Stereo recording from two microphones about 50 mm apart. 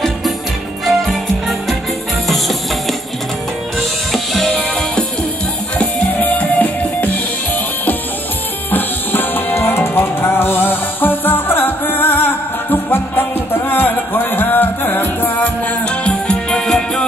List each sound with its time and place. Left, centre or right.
2.2 s music: centre
4.1 s music: centre
4.6 s music: left
8.7 s music: left
15.8 s music: left